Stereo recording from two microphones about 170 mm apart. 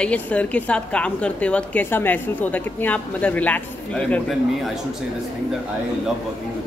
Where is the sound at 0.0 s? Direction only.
10° left (ahead or behind).